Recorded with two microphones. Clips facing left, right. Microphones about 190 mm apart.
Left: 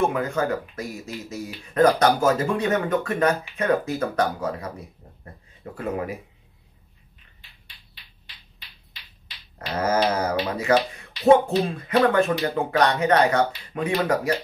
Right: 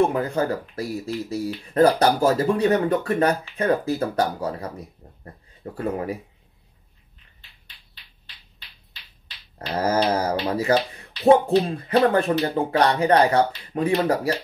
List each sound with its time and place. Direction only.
0.0 s speech: 35° right (ahead or behind)
5.0 s a sound: 35° right (ahead or behind)
5.8 s speech: 35° right (ahead or behind)
9.8 s speech: 30° right (ahead or behind)